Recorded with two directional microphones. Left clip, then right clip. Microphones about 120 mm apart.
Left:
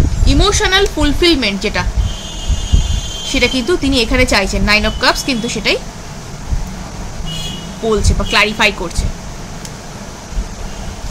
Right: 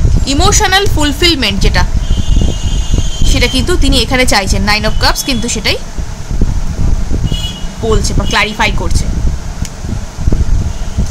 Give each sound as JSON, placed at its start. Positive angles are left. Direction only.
{"t": 0.2, "sound": "a woman's voice", "side_deg": -65}
{"t": 3.3, "sound": "a woman's voice", "side_deg": -55}
{"t": 7.9, "sound": "speech", "side_deg": -45}